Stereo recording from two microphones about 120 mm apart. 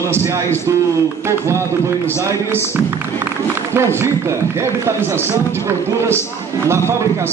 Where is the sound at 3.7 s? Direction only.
20° right (ahead or behind).